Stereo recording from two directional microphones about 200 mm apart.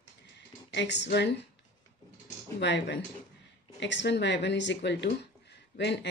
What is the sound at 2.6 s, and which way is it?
Speech, 60° left (ahead or behind).